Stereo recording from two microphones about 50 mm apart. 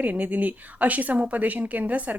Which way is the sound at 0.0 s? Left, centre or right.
Right.